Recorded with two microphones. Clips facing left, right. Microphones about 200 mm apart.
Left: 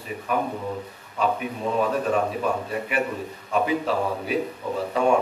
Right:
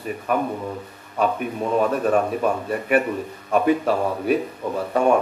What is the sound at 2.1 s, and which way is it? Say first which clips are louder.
A man's voice: right 3 dB; 50° right (ahead or behind).